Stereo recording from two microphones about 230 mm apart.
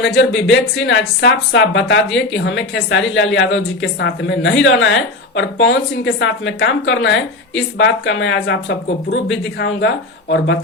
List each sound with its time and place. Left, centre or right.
0.0 s a woman's voice: left